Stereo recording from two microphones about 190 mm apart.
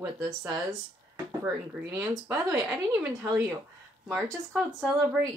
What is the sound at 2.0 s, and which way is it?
A woman's voice, 15° right (ahead or behind).